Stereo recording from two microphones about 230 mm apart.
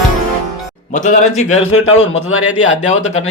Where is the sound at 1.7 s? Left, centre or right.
Left.